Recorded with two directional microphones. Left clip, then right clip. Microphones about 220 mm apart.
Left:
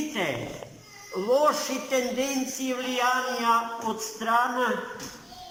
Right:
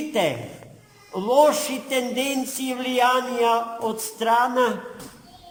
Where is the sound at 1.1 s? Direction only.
45° right (ahead or behind).